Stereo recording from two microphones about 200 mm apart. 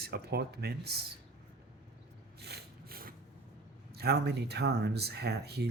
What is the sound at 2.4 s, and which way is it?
Rub, 55° right (ahead or behind).